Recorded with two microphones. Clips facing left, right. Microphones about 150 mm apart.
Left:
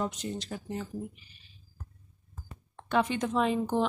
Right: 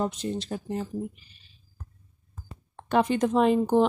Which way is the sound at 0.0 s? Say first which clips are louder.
Right 5 dB; 30° right (ahead or behind).